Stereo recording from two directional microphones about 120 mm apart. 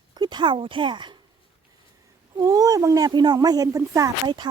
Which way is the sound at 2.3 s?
30° right (ahead or behind).